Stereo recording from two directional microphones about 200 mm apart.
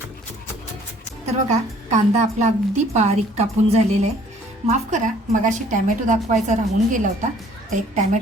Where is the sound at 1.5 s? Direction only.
35° right (ahead or behind).